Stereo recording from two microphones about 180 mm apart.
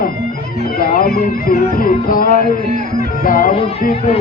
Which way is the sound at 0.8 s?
55° left (ahead or behind).